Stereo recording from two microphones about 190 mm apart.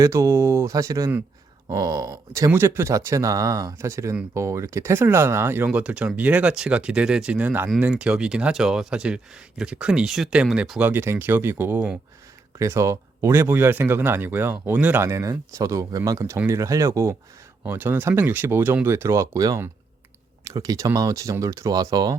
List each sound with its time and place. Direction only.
0.0 s speech: 15° right (ahead or behind)